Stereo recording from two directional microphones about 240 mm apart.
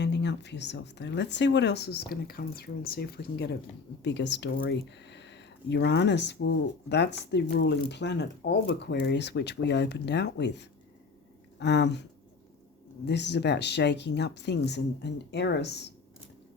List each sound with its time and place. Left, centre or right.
0.0 s speech: left
13.1 s speech: left